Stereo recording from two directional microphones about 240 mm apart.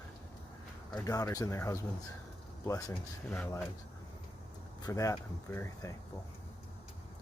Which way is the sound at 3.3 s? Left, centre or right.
Centre.